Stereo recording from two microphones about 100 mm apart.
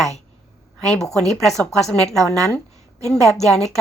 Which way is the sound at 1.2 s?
Centre (ahead or behind).